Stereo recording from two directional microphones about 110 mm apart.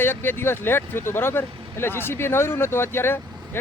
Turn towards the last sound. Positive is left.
turn(degrees=20)  # may be behind; listen again after turning